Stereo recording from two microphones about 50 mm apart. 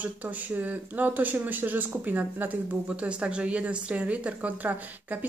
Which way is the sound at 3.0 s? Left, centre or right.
Right.